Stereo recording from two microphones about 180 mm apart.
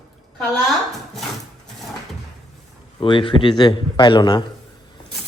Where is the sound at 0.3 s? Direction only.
Centre (ahead or behind).